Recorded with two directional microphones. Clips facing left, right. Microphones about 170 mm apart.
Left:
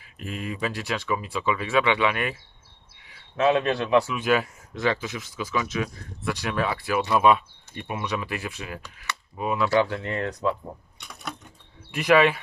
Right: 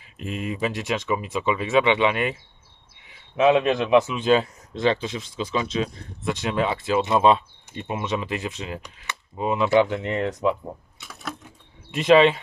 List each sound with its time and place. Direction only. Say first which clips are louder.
0.0 s a man's voice: right 3 dB; 20° right (ahead or behind)
11.0 s a sound: right 2 dB; centre (ahead or behind)
11.9 s a man's voice: right 3 dB; 25° right (ahead or behind)